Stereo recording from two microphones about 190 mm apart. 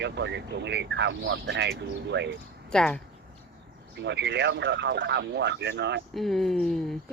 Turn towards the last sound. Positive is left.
turn(degrees=0)  # may be behind; listen again after turning